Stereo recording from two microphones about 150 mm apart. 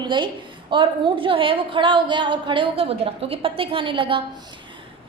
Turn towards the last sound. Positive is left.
turn(degrees=-35)  # may be behind; listen again after turning